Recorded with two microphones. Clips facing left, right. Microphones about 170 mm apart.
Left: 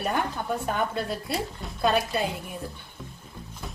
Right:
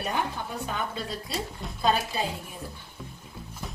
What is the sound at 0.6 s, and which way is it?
A woman's voice, 55° left (ahead or behind).